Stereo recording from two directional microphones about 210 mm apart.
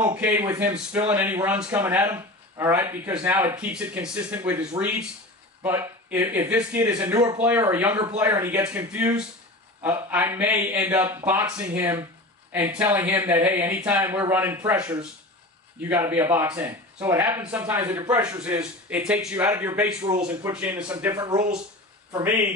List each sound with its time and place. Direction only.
0.0 s a man's voice: 10° right (ahead or behind)
21.1 s speech: 15° right (ahead or behind)